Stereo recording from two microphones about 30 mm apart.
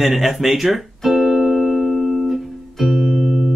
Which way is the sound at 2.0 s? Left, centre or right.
Centre.